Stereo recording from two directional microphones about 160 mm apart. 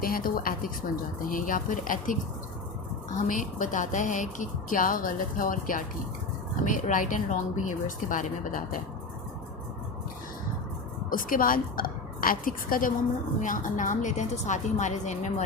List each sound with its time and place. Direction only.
0.0 s a woman's voice: 65° left (ahead or behind)
3.2 s a woman's voice: 55° left (ahead or behind)
11.1 s a woman's voice: 60° left (ahead or behind)